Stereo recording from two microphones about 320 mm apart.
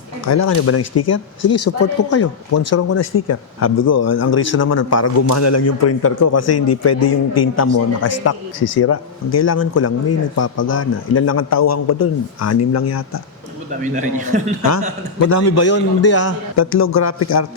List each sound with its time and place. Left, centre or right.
0.3 s a man's voice: left
13.8 s a man's voice: right
15.4 s a man's voice: left